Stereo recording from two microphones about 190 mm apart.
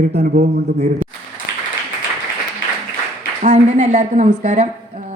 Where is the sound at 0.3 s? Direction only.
55° right (ahead or behind).